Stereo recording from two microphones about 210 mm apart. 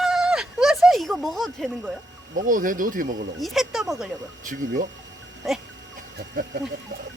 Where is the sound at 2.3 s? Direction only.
40° right (ahead or behind).